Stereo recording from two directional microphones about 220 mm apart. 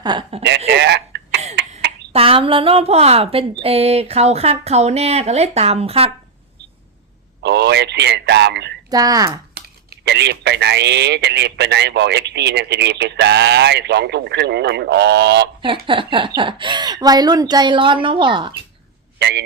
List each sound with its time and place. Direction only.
0.0 s a woman's voice: 20° right (ahead or behind)
0.7 s a sound: 50° right (ahead or behind)
2.1 s a woman's voice: 25° right (ahead or behind)
7.4 s speech: 50° right (ahead or behind)
8.9 s speech: 15° right (ahead or behind)
9.6 s speech: 50° right (ahead or behind)
15.9 s a woman's voice: 20° right (ahead or behind)